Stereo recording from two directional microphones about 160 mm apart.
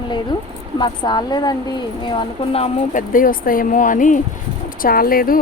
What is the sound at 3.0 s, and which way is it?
A woman's voice, 60° left (ahead or behind).